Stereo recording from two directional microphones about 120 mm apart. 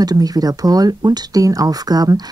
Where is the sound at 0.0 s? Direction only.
30° right (ahead or behind).